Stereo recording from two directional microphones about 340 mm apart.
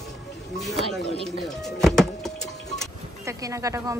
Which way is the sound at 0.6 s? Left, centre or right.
Centre.